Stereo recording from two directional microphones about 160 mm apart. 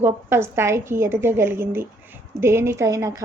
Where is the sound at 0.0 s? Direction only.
15° right (ahead or behind).